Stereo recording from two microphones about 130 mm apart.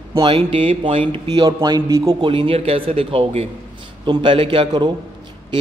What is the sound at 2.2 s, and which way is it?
Speech, 45° right (ahead or behind).